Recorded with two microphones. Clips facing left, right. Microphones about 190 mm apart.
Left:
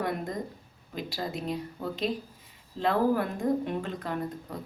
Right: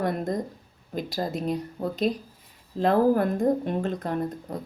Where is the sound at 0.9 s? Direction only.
45° right (ahead or behind).